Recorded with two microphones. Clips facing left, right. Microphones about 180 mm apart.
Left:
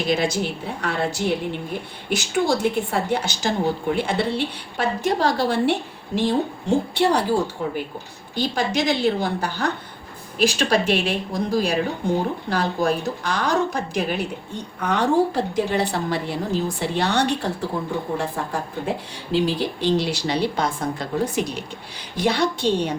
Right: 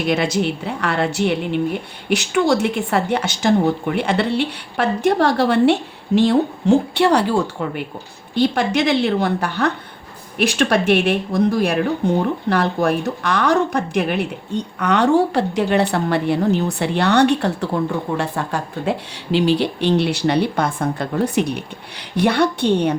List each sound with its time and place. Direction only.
0.1 s a woman's voice: 65° right (ahead or behind)